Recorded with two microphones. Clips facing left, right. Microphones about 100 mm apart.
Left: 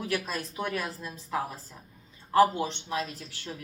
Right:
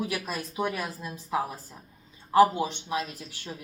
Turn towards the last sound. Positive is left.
turn(degrees=-15)  # may be behind; listen again after turning